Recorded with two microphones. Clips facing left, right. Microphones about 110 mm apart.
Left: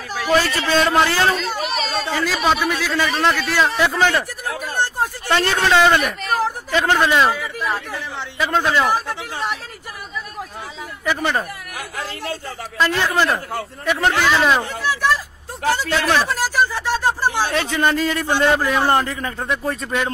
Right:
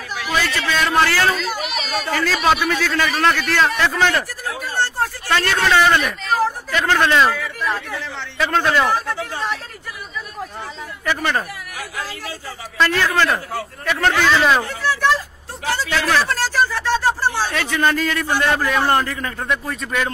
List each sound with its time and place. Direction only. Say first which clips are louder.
0.1 s a man's voice: left 4 dB; 40° left (ahead or behind)
1.5 s speech: left 1 dB; 35° left (ahead or behind)
2.3 s speech: right 2 dB; centre (ahead or behind)
2.6 s speech: right 1 dB; 10° left (ahead or behind)
4.6 s a sound: right 1 dB; 15° left (ahead or behind)
5.4 s a man's voice: left 1 dB; 25° left (ahead or behind)
11.1 s speech: even; 10° left (ahead or behind)
12.7 s speech: right 1 dB; 20° left (ahead or behind)
14.2 s speech: right 1 dB; centre (ahead or behind)
14.6 s a sound: right 1 dB; 15° left (ahead or behind)
15.7 s speech: even; 15° left (ahead or behind)
17.6 s a man's voice: even; 25° left (ahead or behind)